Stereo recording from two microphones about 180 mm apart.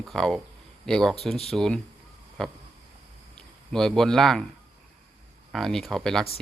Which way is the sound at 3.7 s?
Centre (ahead or behind).